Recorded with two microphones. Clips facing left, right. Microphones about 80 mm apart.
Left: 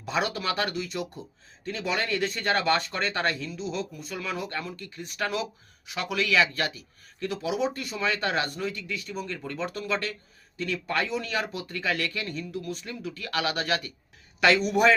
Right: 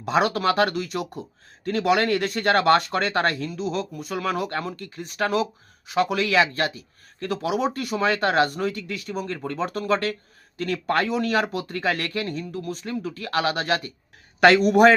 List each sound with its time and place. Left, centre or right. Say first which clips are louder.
0.0 s speech: right 7 dB; right